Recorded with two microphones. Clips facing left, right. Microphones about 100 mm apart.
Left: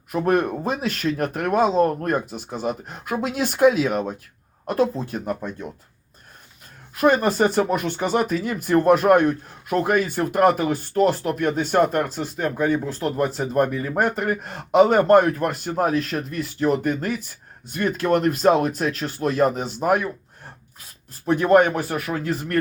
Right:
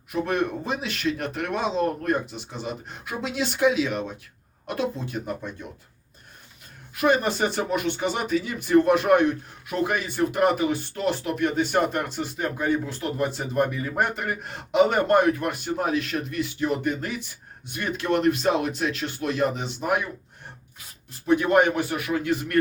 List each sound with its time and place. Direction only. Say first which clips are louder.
0.1 s speech: left 5 dB; 45° left (ahead or behind)
6.9 s speech: left 4 dB; 45° left (ahead or behind)